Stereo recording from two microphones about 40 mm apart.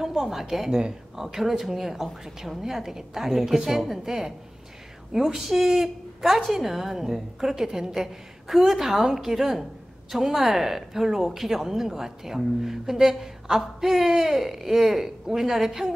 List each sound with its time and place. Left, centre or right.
0.0 s a woman's voice: centre
0.7 s speech: right
1.2 s speech: centre